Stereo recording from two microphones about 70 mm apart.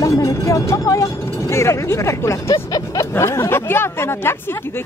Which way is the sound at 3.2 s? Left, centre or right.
Left.